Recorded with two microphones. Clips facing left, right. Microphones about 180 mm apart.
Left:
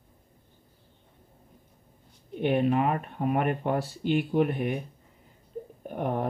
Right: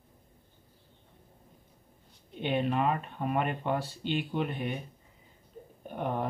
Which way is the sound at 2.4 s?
5° left (ahead or behind).